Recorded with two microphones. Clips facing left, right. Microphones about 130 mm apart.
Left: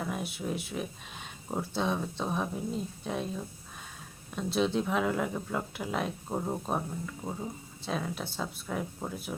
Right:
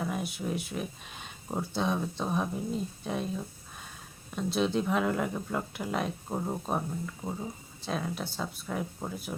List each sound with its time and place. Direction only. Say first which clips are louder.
0.0 s speech: right 1 dB; centre (ahead or behind)